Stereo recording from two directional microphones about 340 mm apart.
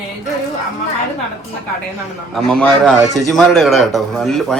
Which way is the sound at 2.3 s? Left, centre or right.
Centre.